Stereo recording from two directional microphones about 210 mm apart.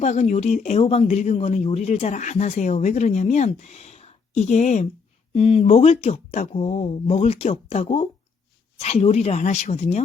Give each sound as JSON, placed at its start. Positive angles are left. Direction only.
{"t": 0.0, "sound": "speech", "side_deg": 30}